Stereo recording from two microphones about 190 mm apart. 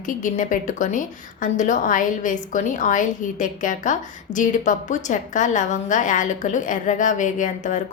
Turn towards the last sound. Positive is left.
turn(degrees=40)  # may be behind; listen again after turning